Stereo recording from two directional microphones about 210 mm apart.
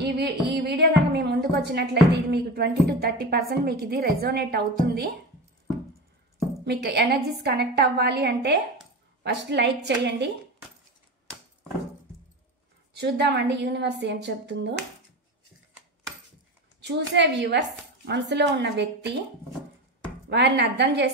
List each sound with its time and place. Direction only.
0.0 s music: 50° right (ahead or behind)
2.3 s a woman's voice: 50° right (ahead or behind)
6.6 s a woman's voice: 50° right (ahead or behind)
12.9 s speech: 55° right (ahead or behind)
16.8 s speech: 55° right (ahead or behind)
20.2 s speech: 55° right (ahead or behind)